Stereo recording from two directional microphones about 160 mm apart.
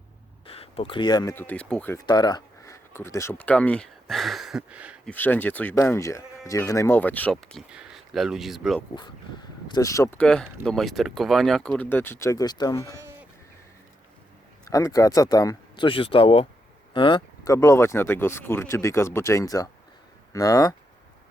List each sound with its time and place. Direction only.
0.4 s speech: 35° left (ahead or behind); by 2.0 s 10° left (ahead or behind)
2.0 s speech: 25° left (ahead or behind); by 4.9 s 5° right (ahead or behind)
5.0 s speech: 10° left (ahead or behind)
7.7 s speech: 5° right (ahead or behind)
9.6 s speech: 25° left (ahead or behind)
10.2 s speech: 5° left (ahead or behind); by 13.0 s 20° left (ahead or behind)
14.6 s speech: 20° left (ahead or behind)
17.5 s speech: 15° left (ahead or behind)